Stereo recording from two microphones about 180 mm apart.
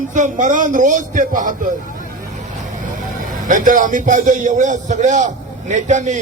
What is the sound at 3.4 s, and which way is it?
A man's voice, 45° right (ahead or behind).